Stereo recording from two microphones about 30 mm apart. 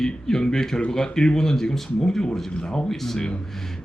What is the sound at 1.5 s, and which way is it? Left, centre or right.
Speech, centre.